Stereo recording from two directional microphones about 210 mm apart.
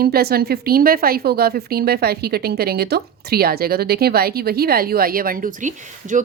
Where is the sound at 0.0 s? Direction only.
50° right (ahead or behind).